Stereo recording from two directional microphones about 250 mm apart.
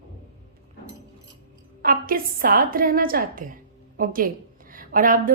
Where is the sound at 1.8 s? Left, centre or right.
Right.